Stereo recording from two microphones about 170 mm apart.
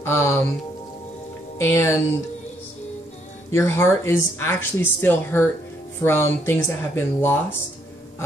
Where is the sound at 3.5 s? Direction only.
15° left (ahead or behind).